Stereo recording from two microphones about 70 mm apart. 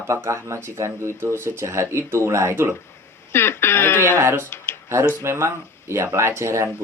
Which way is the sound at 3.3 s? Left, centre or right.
Left.